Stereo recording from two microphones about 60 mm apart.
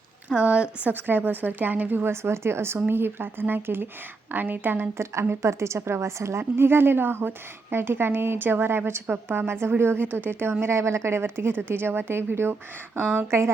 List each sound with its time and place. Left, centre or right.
0.4 s speech: centre
0.9 s a woman's voice: right
5.3 s a woman's voice: right
6.6 s a woman's voice: right